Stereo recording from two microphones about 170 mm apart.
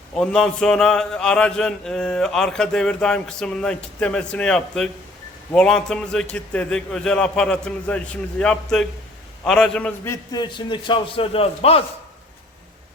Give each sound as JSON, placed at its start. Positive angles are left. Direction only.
{"t": 0.2, "sound": "mantra", "side_deg": 5}
{"t": 9.4, "sound": "a man's voice", "side_deg": 5}